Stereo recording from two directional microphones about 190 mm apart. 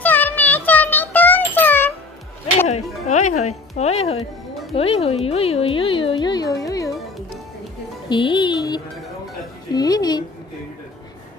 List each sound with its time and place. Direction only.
0.0 s music: 10° left (ahead or behind)
2.7 s music: 35° left (ahead or behind)
4.7 s speech: 30° left (ahead or behind)
8.1 s speech: 25° left (ahead or behind)